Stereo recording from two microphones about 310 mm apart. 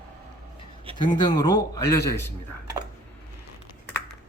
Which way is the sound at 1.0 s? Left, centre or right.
Centre.